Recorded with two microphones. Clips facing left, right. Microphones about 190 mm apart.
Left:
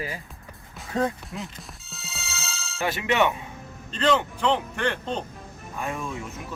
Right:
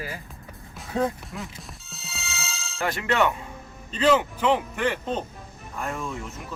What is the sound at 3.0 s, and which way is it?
Speech, 20° left (ahead or behind).